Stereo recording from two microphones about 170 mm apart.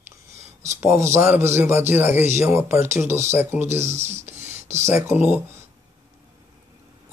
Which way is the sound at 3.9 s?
40° right (ahead or behind).